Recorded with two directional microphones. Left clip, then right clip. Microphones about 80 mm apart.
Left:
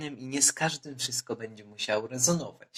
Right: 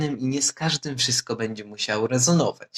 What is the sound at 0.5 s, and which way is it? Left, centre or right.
Speech, right.